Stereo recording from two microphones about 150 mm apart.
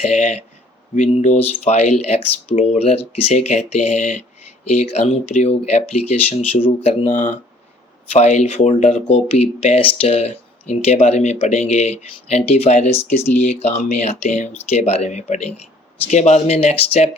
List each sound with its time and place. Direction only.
0.0 s speech: 50° left (ahead or behind)